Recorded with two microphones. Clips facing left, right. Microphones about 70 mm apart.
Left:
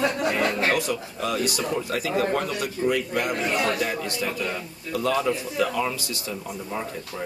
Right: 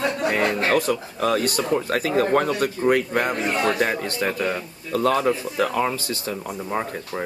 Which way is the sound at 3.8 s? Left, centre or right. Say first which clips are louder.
Right 4 dB; right.